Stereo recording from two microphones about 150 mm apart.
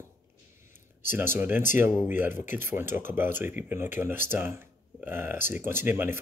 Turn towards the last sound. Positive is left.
turn(degrees=-15)  # may be behind; listen again after turning